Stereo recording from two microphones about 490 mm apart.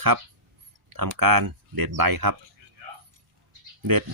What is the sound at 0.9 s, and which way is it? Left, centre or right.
Speech, right.